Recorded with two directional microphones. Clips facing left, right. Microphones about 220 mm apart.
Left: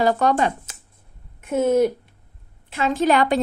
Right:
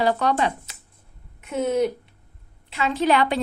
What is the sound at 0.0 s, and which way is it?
A woman's voice, 45° left (ahead or behind).